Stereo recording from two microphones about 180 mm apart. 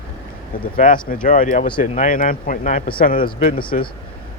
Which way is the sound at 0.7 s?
50° left (ahead or behind).